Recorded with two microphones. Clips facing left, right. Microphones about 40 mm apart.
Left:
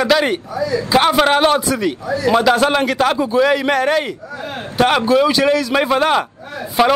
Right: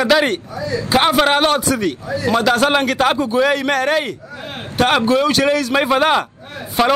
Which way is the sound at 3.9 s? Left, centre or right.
Centre.